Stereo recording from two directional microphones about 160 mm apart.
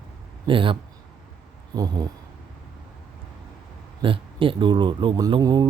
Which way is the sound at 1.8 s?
25° right (ahead or behind).